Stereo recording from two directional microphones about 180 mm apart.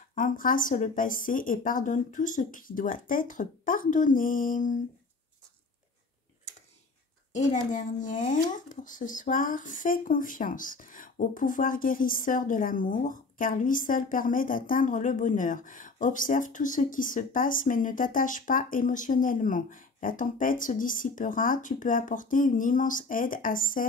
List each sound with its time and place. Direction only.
0.1 s speech: 50° left (ahead or behind)
7.3 s speech: 45° left (ahead or behind)